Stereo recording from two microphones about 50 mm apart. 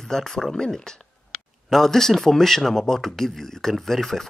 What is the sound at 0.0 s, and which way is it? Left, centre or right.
Speech, centre.